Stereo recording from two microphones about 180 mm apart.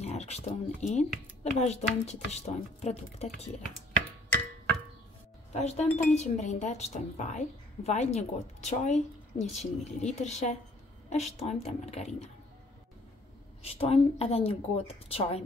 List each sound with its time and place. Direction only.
0.0 s a woman's voice: 35° left (ahead or behind)
5.5 s a woman's voice: 35° left (ahead or behind)
13.6 s a woman's voice: 35° left (ahead or behind)